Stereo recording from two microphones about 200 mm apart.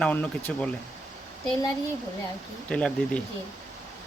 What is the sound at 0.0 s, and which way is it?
Speech, 10° left (ahead or behind).